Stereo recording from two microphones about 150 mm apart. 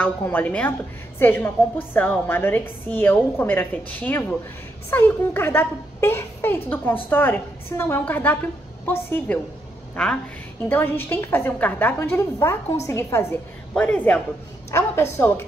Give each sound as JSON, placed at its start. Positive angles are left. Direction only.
{"t": 0.0, "sound": "a woman's voice", "side_deg": 10}